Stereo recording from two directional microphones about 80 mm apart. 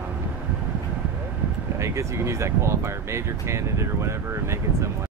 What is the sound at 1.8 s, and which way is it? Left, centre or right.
Speech, right.